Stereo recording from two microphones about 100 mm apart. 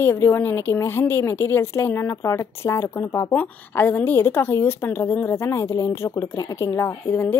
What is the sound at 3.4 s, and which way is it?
A woman's voice, 20° left (ahead or behind).